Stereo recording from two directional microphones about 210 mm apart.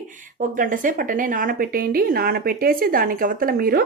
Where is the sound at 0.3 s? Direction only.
40° right (ahead or behind).